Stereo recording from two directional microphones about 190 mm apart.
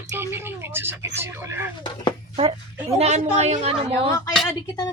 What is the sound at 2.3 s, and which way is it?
A woman's voice, 30° right (ahead or behind).